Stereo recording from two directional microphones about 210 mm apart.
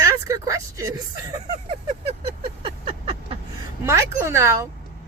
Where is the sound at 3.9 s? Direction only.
15° right (ahead or behind).